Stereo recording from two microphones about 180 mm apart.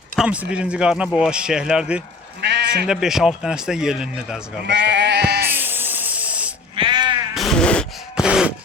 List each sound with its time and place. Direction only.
0.2 s speech: 5° right (ahead or behind)
2.4 s sheep: 70° right (ahead or behind)
2.8 s speech: 5° right (ahead or behind)
4.6 s sheep: 70° right (ahead or behind)
5.5 s a sound: 10° right (ahead or behind)
6.7 s sheep: 25° right (ahead or behind)
7.3 s a sound: centre (ahead or behind)